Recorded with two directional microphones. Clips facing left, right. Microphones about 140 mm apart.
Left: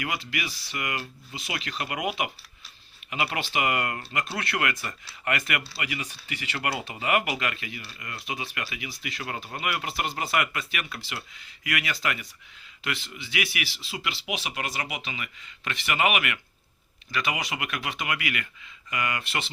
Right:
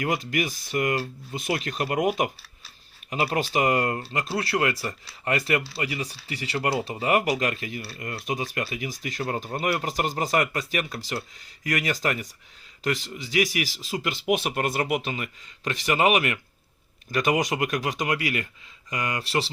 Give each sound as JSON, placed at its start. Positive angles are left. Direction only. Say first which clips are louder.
{"t": 0.0, "sound": "speech", "louder": "right 6 dB", "side_deg": -40}